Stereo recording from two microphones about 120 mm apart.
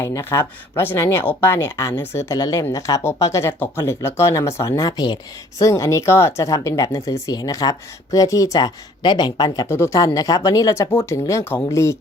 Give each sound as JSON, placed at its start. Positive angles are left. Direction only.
{"t": 0.0, "sound": "speech", "side_deg": 25}
{"t": 9.6, "sound": "speech", "side_deg": 20}